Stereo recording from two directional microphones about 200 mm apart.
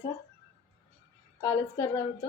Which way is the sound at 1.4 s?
15° left (ahead or behind).